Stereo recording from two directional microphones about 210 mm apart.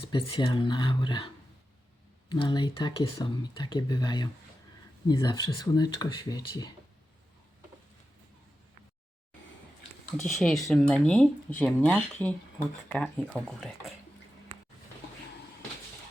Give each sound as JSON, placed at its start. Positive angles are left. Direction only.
{"t": 0.0, "sound": "speech", "side_deg": 25}
{"t": 2.3, "sound": "speech", "side_deg": 20}
{"t": 10.3, "sound": "speech", "side_deg": 0}